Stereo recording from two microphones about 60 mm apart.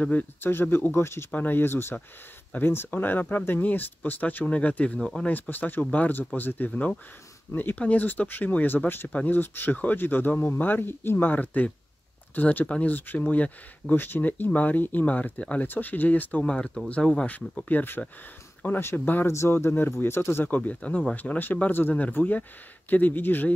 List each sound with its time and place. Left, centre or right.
0.0 s speech: left
0.5 s speech: left
1.3 s speech: left
13.9 s speech: left; by 17.3 s centre
17.3 s speech: left
20.4 s speech: left